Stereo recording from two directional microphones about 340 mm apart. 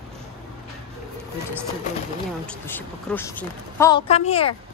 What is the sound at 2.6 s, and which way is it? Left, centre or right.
Speech, centre.